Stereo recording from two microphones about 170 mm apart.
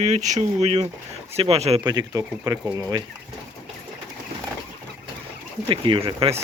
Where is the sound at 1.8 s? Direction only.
20° right (ahead or behind).